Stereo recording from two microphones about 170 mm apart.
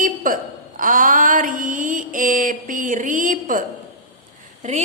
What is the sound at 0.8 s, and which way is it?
Mantra, 50° right (ahead or behind).